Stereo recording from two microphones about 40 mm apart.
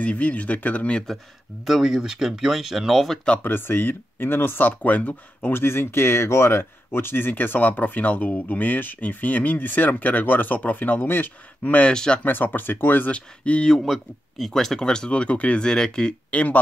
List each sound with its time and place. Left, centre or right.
0.0 s speech: left
1.7 s speech: centre
3.4 s speech: left
4.6 s speech: left
5.5 s speech: left
11.9 s speech: centre
12.3 s speech: left
13.1 s speech: left
13.8 s speech: centre
14.8 s speech: left
15.6 s speech: centre
16.3 s speech: left